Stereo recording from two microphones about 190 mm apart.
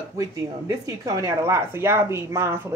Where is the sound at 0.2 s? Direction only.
20° right (ahead or behind).